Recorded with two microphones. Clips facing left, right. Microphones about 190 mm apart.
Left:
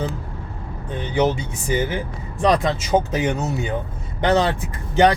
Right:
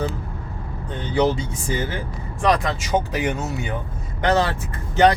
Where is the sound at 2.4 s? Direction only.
20° left (ahead or behind).